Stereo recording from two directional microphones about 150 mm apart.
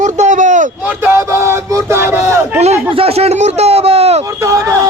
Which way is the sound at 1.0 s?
15° right (ahead or behind).